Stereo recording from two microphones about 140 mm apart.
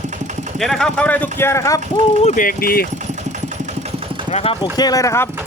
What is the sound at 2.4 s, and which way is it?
Speech, 90° left.